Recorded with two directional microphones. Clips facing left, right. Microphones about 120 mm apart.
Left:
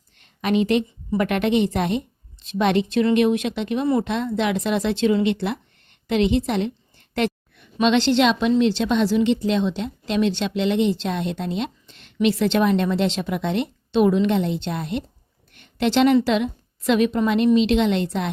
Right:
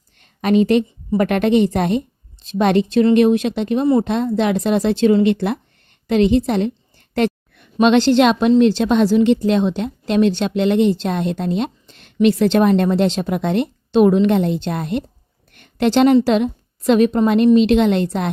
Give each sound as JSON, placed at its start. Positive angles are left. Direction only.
{"t": 0.4, "sound": "a woman's voice", "side_deg": -40}
{"t": 7.5, "sound": "a woman's voice", "side_deg": -50}
{"t": 15.5, "sound": "a sound", "side_deg": -45}
{"t": 16.2, "sound": "a woman's voice", "side_deg": -40}